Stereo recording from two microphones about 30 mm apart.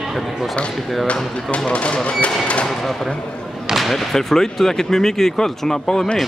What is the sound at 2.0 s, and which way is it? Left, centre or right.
Music, left.